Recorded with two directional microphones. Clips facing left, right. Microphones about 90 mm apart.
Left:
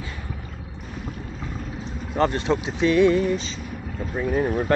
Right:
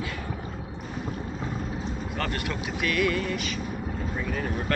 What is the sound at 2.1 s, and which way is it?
Speech, 25° left (ahead or behind).